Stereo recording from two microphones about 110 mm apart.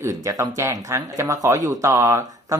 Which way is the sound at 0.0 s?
30° right (ahead or behind).